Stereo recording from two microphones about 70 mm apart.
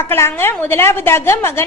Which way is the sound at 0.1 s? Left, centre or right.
Left.